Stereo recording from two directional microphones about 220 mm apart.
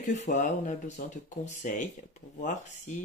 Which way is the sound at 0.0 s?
35° left (ahead or behind).